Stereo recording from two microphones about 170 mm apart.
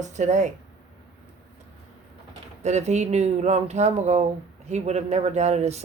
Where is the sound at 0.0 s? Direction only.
45° right (ahead or behind).